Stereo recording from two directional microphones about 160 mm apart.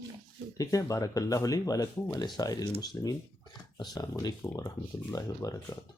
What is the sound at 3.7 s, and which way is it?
Speech, 25° left (ahead or behind).